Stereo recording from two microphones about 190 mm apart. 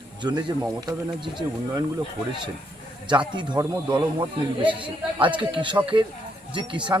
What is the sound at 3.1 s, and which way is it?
Speech, 25° right (ahead or behind).